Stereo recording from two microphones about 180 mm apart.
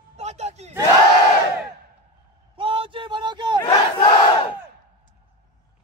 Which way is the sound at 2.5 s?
30° right (ahead or behind).